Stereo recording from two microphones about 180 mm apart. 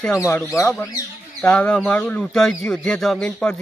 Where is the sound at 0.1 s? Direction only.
15° left (ahead or behind).